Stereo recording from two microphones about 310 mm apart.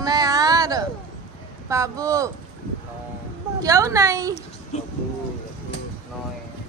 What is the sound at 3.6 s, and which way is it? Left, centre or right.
Speech, centre.